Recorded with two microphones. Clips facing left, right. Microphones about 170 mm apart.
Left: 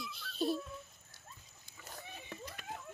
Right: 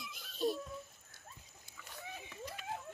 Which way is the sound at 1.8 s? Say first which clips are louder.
Left 1 dB; 45° left (ahead or behind).